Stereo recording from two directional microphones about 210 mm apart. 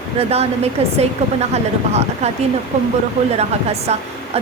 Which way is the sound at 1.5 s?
30° right (ahead or behind).